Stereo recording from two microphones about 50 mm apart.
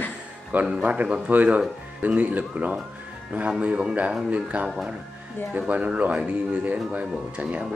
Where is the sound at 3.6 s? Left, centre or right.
Right.